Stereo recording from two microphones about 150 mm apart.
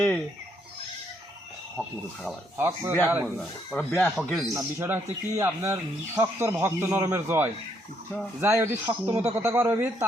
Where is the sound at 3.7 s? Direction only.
10° left (ahead or behind).